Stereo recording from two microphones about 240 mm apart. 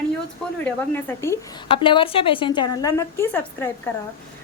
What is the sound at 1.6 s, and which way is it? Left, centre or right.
A woman's voice, left.